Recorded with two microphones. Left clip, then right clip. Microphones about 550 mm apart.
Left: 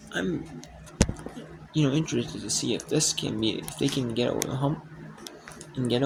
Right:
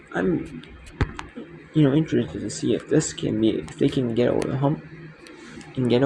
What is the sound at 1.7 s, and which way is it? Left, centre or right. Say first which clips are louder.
Speech: right 6 dB; left.